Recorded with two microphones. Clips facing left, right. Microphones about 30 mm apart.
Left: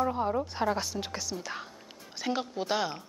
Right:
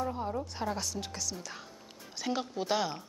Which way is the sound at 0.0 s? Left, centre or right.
Left.